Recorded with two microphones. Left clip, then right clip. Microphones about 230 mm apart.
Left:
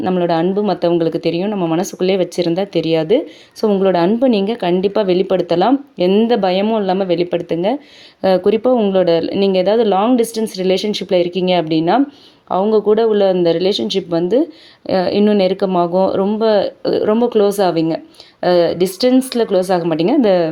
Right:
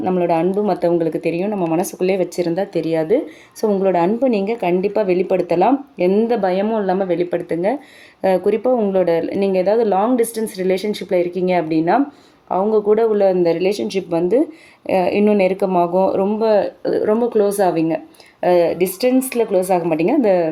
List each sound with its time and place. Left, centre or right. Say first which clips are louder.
0.0 s speech: left 1 dB; left